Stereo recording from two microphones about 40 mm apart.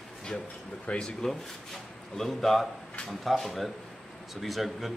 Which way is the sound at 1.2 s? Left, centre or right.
Centre.